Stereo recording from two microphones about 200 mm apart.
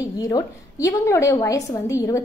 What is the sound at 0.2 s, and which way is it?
A woman's voice, 20° left (ahead or behind).